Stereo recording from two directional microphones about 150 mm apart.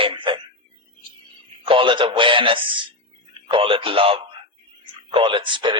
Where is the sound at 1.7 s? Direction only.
35° right (ahead or behind).